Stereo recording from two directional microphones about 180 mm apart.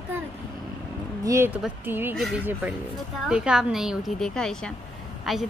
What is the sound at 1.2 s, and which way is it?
Speech, 15° right (ahead or behind).